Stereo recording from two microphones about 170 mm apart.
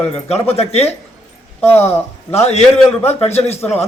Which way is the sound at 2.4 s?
40° left (ahead or behind).